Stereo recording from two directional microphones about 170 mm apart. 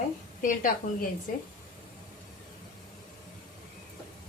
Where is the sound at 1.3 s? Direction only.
50° left (ahead or behind).